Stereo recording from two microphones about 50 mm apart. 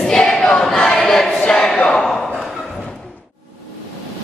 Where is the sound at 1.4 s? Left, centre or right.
Centre.